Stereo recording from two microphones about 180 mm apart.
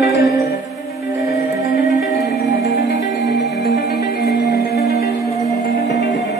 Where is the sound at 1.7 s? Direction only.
65° left (ahead or behind).